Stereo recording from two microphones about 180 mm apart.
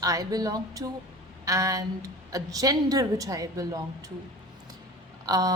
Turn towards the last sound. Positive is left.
turn(degrees=-20)  # may be behind; listen again after turning